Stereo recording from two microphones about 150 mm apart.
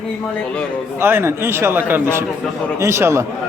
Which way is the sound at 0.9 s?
15° right (ahead or behind).